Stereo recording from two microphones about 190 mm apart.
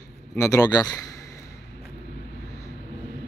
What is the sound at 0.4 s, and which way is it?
Speech, 15° left (ahead or behind).